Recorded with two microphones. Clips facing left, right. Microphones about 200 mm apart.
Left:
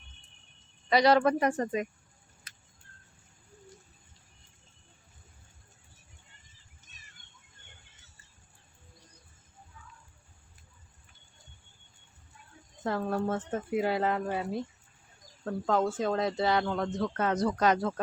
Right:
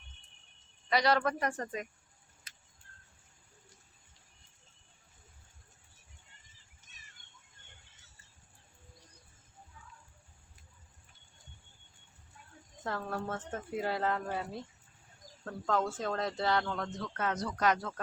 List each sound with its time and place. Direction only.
0.9 s speech: 20° left (ahead or behind)
12.8 s speech: 20° left (ahead or behind)
15.8 s speech: 15° left (ahead or behind)
17.0 s speech: 35° left (ahead or behind)